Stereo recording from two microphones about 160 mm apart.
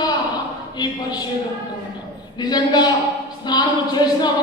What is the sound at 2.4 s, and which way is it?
Speech, 25° left (ahead or behind).